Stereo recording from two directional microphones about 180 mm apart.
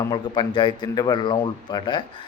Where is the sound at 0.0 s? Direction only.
25° left (ahead or behind).